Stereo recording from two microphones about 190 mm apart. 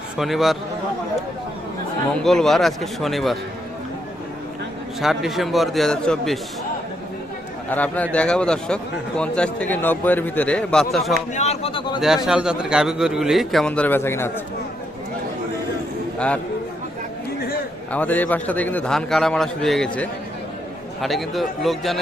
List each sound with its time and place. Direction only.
0.2 s a man's voice: centre (ahead or behind)
2.2 s a man's voice: centre (ahead or behind)
4.9 s a man's voice: centre (ahead or behind)
7.7 s a man's voice: 10° left (ahead or behind)
11.3 s speech: 35° left (ahead or behind)
11.9 s a man's voice: centre (ahead or behind)
16.1 s a man's voice: 5° left (ahead or behind)
17.9 s a man's voice: 10° left (ahead or behind)